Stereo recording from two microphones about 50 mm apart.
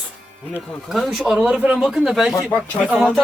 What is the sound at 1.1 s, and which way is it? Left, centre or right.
Speech, centre.